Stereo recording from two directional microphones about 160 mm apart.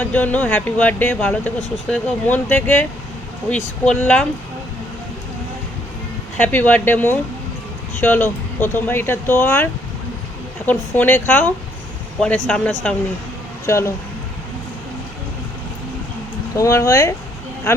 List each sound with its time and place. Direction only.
0.0 s speech: 10° left (ahead or behind)
6.3 s speech: 10° left (ahead or behind)
10.7 s speech: 10° left (ahead or behind)
16.6 s speech: 20° left (ahead or behind)